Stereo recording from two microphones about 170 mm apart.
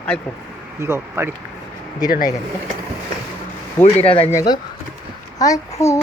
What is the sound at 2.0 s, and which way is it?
Speech, 55° left (ahead or behind).